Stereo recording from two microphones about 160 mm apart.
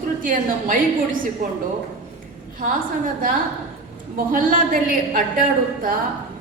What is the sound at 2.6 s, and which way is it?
A woman's voice, 60° right (ahead or behind).